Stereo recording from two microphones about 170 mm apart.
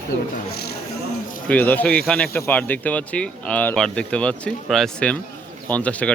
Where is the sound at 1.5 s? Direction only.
10° left (ahead or behind).